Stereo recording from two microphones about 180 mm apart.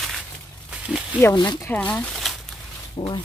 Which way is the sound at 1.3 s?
20° left (ahead or behind).